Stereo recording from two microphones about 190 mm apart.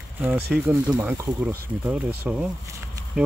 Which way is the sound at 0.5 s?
10° right (ahead or behind).